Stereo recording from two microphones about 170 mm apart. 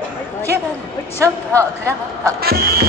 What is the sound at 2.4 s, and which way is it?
Music, 65° right (ahead or behind).